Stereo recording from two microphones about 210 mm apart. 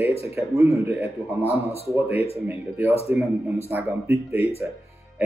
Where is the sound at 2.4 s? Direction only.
10° right (ahead or behind).